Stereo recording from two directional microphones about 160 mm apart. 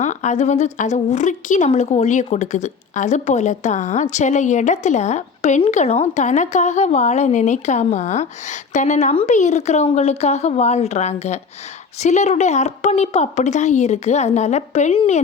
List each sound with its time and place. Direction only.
0.0 s a woman's voice: 50° left (ahead or behind)